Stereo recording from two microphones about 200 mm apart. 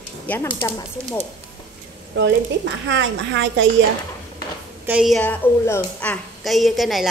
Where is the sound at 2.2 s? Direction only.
65° right (ahead or behind).